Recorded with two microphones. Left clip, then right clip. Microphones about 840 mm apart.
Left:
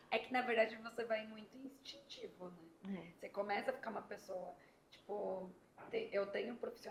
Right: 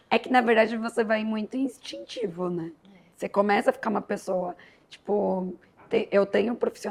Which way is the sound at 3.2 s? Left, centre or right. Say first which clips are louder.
Right 18 dB; right.